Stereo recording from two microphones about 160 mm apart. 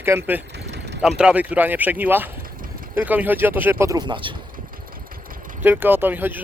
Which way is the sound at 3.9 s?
30° right (ahead or behind).